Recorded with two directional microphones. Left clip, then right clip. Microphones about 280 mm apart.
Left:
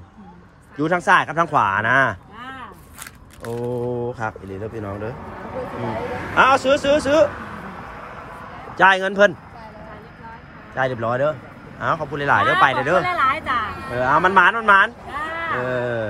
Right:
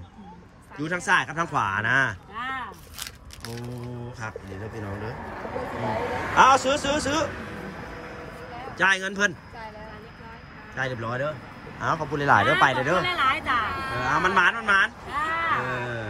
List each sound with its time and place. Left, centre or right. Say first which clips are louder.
0.7 s speech: left 7 dB; centre
3.0 s crushing: left 3 dB; centre
4.1 s speech: left 9 dB; centre
5.5 s speech: left 2 dB; right
6.3 s speech: left 3 dB; centre
8.7 s speech: left 8 dB; centre
10.7 s speech: left 8 dB; centre
11.8 s speech: left 4 dB; centre
13.1 s speech: left 4 dB; centre